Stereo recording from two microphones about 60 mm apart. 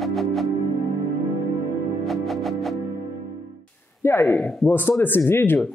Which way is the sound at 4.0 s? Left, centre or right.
Left.